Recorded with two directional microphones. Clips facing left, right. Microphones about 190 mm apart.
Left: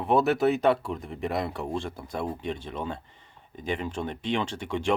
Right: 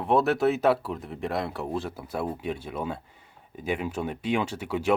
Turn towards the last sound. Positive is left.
turn(degrees=-5)  # may be behind; listen again after turning